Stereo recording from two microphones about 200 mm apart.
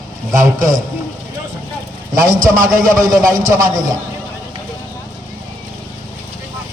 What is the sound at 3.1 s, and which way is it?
Speech, 15° right (ahead or behind).